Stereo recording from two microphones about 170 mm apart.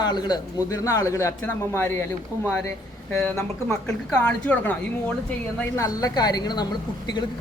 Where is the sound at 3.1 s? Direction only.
15° left (ahead or behind).